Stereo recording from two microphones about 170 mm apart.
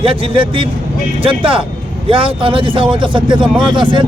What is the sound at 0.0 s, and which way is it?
A man's voice, 30° right (ahead or behind).